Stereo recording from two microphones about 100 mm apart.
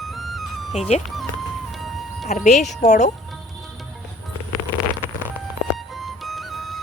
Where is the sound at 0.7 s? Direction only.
90° left.